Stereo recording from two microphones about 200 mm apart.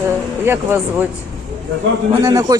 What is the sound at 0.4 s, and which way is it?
Speech, 10° right (ahead or behind).